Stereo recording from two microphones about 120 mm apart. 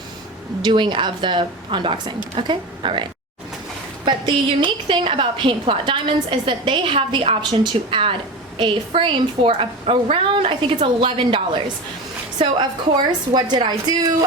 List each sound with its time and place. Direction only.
0.6 s a woman's voice: 40° right (ahead or behind)
13.1 s a woman's voice: 35° right (ahead or behind)